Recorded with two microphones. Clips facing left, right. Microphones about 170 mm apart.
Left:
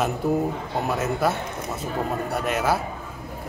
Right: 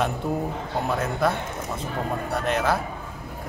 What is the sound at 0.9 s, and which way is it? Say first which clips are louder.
Speech: left 1 dB; 5° left (ahead or behind).